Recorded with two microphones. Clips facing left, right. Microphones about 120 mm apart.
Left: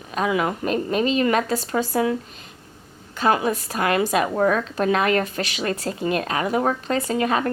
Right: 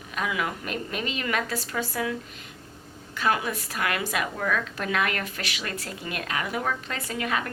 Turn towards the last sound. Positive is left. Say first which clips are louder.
# left 8 dB
turn(degrees=35)  # may be behind; listen again after turning